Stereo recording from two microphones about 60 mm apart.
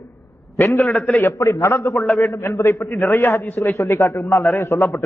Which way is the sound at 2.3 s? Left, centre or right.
Left.